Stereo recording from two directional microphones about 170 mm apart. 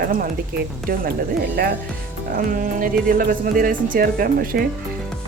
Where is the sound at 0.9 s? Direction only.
65° right (ahead or behind).